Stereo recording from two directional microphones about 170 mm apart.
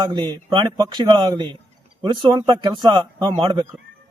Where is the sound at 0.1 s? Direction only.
25° right (ahead or behind).